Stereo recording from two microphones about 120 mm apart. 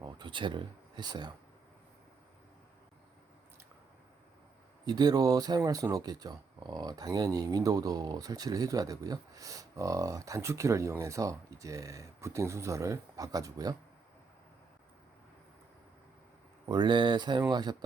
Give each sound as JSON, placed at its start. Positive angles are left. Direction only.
{"t": 0.0, "sound": "speech", "side_deg": -40}
{"t": 4.9, "sound": "speech", "side_deg": -35}
{"t": 16.6, "sound": "speech", "side_deg": -40}